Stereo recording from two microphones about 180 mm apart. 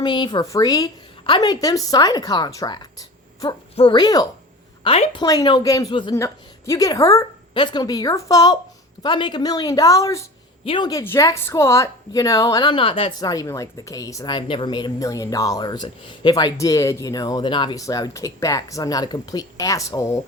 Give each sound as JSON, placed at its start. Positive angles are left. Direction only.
{"t": 0.0, "sound": "a woman's voice", "side_deg": 25}